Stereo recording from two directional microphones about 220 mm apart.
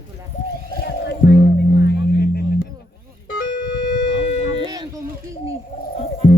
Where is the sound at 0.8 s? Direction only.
45° left (ahead or behind).